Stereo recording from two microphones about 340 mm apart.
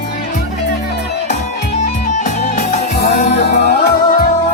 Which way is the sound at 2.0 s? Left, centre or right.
Left.